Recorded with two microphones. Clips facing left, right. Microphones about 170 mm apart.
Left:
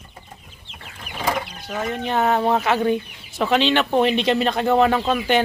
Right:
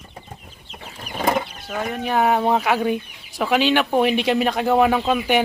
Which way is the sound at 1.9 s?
10° right (ahead or behind).